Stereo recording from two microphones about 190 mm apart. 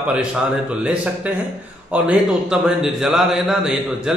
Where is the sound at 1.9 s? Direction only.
5° right (ahead or behind).